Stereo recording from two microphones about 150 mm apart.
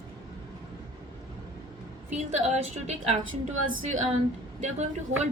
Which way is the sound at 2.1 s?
50° right (ahead or behind).